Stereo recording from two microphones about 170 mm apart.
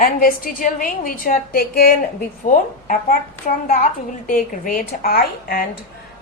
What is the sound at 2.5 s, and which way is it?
A woman's voice, 50° left (ahead or behind).